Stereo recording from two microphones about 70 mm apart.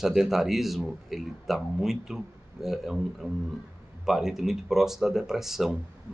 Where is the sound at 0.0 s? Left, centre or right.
Centre.